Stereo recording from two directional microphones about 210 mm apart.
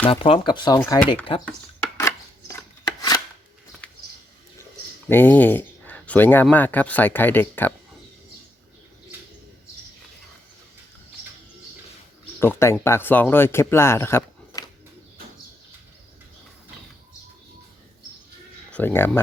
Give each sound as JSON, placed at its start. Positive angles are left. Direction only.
{"t": 0.0, "sound": "speech", "side_deg": 25}
{"t": 0.8, "sound": "speech", "side_deg": 10}
{"t": 1.5, "sound": "chopping", "side_deg": 10}
{"t": 5.0, "sound": "speech", "side_deg": 10}
{"t": 12.4, "sound": "speech", "side_deg": 10}
{"t": 18.7, "sound": "speech", "side_deg": 10}